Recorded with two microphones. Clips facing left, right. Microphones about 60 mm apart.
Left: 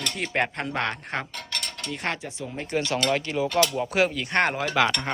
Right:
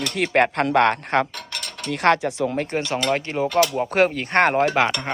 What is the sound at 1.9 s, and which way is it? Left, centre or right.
Speech, right.